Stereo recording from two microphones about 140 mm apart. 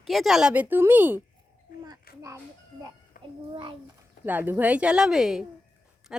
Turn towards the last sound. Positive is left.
turn(degrees=-5)  # may be behind; listen again after turning